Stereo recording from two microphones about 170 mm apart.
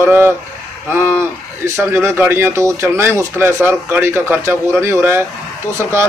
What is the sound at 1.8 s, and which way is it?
Speech, 15° right (ahead or behind).